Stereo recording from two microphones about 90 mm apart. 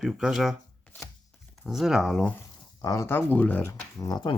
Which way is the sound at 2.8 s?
35° left (ahead or behind).